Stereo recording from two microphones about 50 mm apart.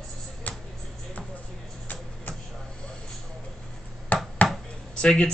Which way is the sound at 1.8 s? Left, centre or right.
Left.